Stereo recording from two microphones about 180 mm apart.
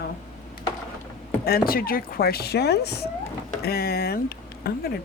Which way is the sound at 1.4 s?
55° left (ahead or behind).